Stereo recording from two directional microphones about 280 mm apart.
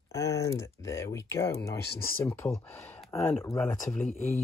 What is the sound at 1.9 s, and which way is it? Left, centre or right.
Speech, left.